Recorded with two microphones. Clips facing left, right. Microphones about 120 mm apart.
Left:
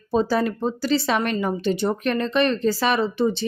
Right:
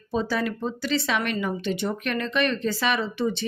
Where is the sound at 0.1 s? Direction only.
35° left (ahead or behind).